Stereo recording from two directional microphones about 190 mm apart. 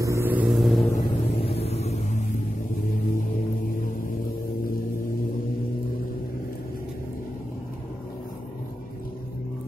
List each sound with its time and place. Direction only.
0.0 s vehicle: 15° right (ahead or behind)
0.9 s vehicle: 35° left (ahead or behind)